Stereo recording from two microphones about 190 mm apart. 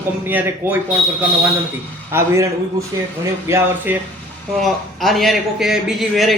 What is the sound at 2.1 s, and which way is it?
A man's voice, 15° right (ahead or behind).